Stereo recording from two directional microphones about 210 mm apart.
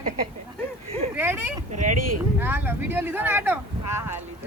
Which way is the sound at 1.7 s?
35° right (ahead or behind).